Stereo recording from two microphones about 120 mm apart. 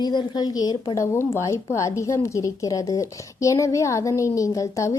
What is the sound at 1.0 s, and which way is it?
A woman's voice, 25° left (ahead or behind).